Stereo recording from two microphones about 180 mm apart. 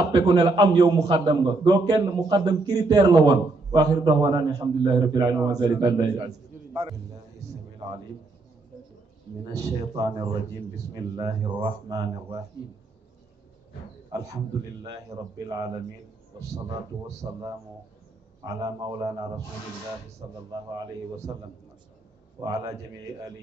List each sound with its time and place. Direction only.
0.1 s a man's voice: 20° right (ahead or behind)
9.9 s a man's voice: 20° right (ahead or behind)
14.1 s a man's voice: 20° right (ahead or behind)
17.3 s a man's voice: 20° right (ahead or behind)
18.5 s a man's voice: 20° right (ahead or behind)
20.5 s a man's voice: 20° right (ahead or behind)